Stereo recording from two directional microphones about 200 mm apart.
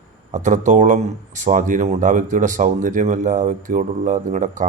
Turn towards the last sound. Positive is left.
turn(degrees=-40)  # may be behind; listen again after turning